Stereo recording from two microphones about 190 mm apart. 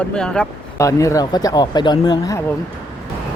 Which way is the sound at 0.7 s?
15° left (ahead or behind).